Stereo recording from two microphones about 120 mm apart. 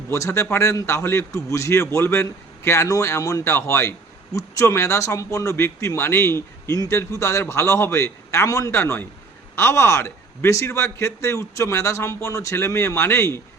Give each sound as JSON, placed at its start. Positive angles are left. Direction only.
{"t": 0.1, "sound": "a man's voice", "side_deg": 25}